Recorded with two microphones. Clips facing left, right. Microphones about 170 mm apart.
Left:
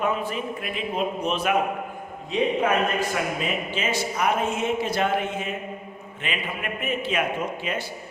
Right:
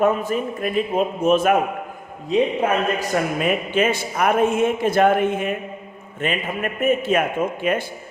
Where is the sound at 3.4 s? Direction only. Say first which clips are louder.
Right 8 dB; 55° right (ahead or behind).